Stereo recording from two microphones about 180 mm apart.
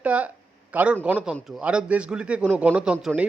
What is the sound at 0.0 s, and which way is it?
A man's voice, 10° right (ahead or behind).